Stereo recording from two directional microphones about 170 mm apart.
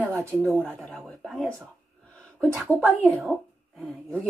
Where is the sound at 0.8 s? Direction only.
5° left (ahead or behind).